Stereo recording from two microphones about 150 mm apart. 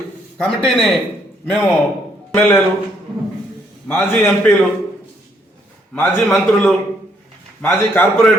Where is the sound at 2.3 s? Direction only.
10° left (ahead or behind).